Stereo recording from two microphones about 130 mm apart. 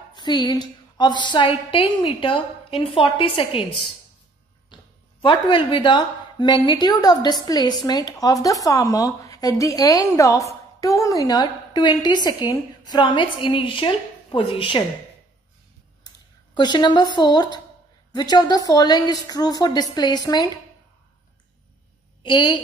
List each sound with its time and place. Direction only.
0.1 s a woman's voice: 35° left (ahead or behind)
5.2 s a woman's voice: 40° left (ahead or behind)
16.5 s a woman's voice: 35° left (ahead or behind)
22.2 s a woman's voice: 35° left (ahead or behind)